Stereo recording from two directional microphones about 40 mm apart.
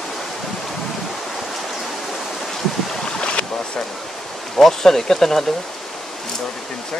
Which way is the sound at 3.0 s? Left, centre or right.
Left.